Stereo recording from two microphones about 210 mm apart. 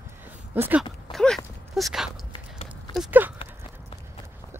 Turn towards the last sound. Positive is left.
turn(degrees=-5)  # may be behind; listen again after turning